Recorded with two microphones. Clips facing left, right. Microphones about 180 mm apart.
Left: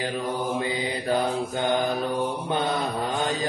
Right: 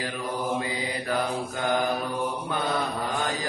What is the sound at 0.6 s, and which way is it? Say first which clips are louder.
Mantra: left 3 dB; 25° left (ahead or behind).